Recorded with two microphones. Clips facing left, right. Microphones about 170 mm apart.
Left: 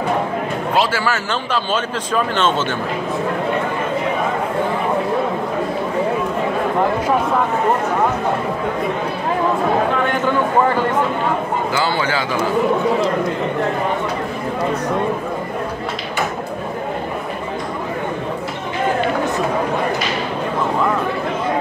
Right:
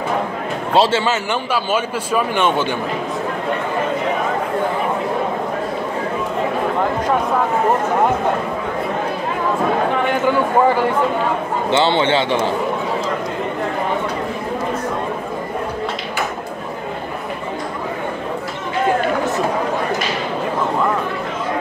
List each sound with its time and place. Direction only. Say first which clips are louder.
0.7 s a man's voice: right 4 dB; 25° right (ahead or behind)
11.7 s a man's voice: right 7 dB; 25° right (ahead or behind)